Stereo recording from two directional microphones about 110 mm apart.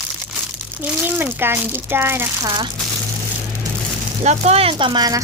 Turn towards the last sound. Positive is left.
turn(degrees=-35)  # may be behind; listen again after turning